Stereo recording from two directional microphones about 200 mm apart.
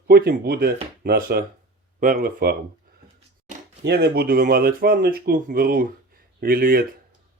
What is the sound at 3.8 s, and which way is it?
Speech, 55° right (ahead or behind).